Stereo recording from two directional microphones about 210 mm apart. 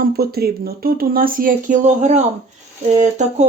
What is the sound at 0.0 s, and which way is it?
Speech, 45° right (ahead or behind).